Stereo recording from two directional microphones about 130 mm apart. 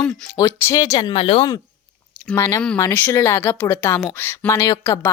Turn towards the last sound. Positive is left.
turn(degrees=25)  # may be behind; listen again after turning